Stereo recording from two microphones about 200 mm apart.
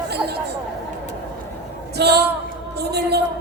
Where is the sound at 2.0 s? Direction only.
55° right (ahead or behind).